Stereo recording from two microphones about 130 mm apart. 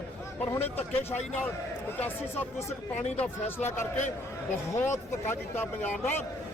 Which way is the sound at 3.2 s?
15° left (ahead or behind).